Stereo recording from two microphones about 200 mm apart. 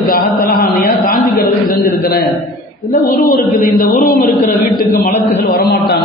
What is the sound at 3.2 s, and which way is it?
Chant, 45° left (ahead or behind).